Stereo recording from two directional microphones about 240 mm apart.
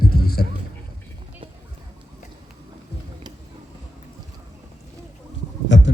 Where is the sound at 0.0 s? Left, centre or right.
Left.